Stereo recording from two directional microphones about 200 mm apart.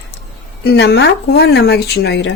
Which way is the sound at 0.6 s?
55° left (ahead or behind).